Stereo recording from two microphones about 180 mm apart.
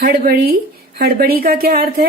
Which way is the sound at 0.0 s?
60° right (ahead or behind).